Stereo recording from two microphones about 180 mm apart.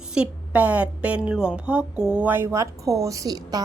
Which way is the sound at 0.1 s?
5° right (ahead or behind).